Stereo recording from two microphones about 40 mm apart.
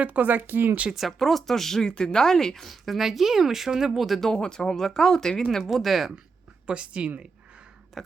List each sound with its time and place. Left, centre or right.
0.0 s speech: right
0.9 s speech: centre
2.6 s speech: centre
4.2 s speech: centre
5.7 s speech: centre
6.7 s speech: right
8.0 s a sound: centre